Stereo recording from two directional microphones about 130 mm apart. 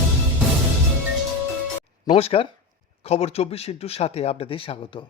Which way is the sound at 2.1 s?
50° left (ahead or behind).